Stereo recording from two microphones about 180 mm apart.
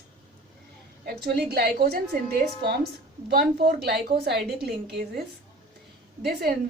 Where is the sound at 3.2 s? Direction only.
60° right (ahead or behind).